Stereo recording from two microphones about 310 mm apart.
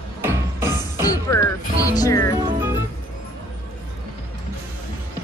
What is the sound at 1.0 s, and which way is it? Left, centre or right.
Speech, centre.